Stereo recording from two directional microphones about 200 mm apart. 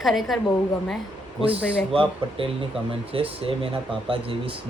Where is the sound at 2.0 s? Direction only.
25° right (ahead or behind).